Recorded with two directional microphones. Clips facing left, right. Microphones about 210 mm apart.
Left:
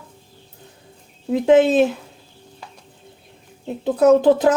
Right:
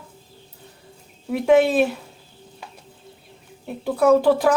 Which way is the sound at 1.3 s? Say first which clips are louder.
Left 2 dB; 20° left (ahead or behind).